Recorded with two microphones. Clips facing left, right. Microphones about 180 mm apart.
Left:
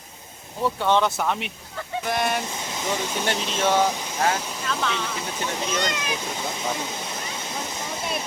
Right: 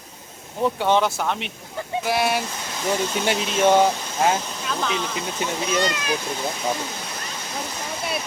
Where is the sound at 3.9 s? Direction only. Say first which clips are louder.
Even; 15° left (ahead or behind).